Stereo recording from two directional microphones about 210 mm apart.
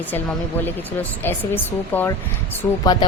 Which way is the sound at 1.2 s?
10° left (ahead or behind).